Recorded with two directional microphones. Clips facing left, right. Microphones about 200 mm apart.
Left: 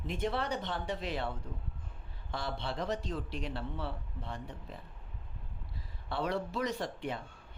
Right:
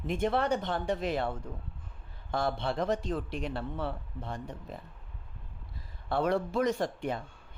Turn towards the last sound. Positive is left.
turn(degrees=-45)  # may be behind; listen again after turning